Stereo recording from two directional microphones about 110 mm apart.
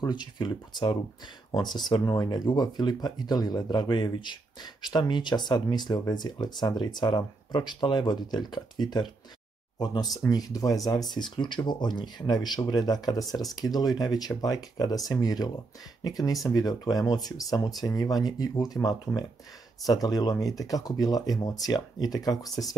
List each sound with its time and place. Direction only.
0.0 s speech: 45° left (ahead or behind)